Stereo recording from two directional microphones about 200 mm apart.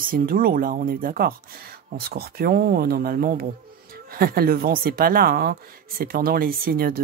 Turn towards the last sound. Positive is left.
turn(degrees=-50)  # may be behind; listen again after turning